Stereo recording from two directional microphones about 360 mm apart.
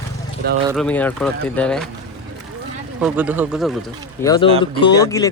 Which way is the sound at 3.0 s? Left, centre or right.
Centre.